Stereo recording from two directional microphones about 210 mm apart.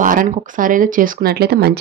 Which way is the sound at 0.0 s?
40° right (ahead or behind).